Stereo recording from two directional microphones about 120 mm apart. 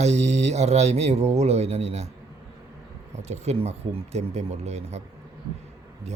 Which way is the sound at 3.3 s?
65° right (ahead or behind).